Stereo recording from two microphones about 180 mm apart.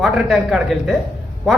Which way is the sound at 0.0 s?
5° right (ahead or behind).